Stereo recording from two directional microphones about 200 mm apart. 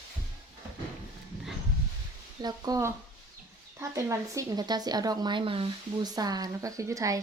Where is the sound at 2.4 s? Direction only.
20° right (ahead or behind).